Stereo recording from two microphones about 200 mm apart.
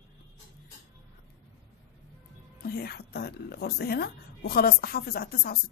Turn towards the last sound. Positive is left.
turn(degrees=50)  # may be behind; listen again after turning